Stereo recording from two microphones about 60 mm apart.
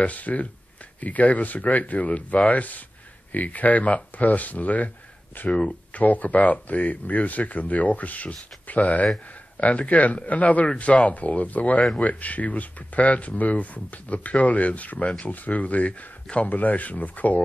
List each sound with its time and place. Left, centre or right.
0.0 s speech: left
5.5 s speech: centre